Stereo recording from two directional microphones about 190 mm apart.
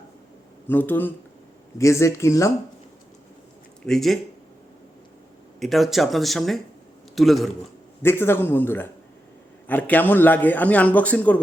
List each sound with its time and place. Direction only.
0.7 s a man's voice: 10° left (ahead or behind)
3.8 s speech: centre (ahead or behind)
5.5 s speech: centre (ahead or behind)
8.0 s a man's voice: 10° left (ahead or behind)